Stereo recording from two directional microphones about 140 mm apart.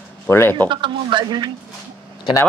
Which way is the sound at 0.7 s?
35° right (ahead or behind).